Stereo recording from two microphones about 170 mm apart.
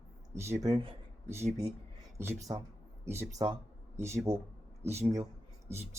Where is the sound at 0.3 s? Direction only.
15° right (ahead or behind).